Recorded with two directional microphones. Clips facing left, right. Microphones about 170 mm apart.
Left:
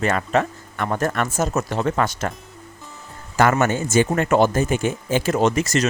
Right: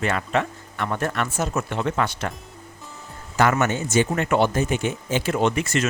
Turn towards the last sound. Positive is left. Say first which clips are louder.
# left 3 dB
turn(degrees=40)  # may be behind; listen again after turning